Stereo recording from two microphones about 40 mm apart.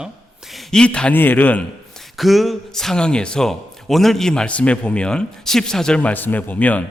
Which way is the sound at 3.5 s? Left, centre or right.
Centre.